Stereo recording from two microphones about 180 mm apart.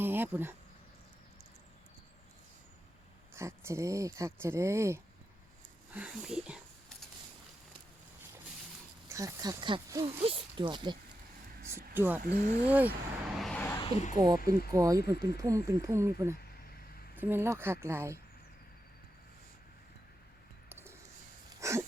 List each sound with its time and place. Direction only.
0.0 s insect: 10° right (ahead or behind)
3.3 s speech: 15° right (ahead or behind)
9.0 s speech: 20° right (ahead or behind)
11.9 s speech: 10° right (ahead or behind)
13.4 s vehicle: 5° left (ahead or behind)
14.2 s speech: 20° right (ahead or behind)
20.7 s bird: 10° right (ahead or behind)
21.6 s wheeze: 15° right (ahead or behind)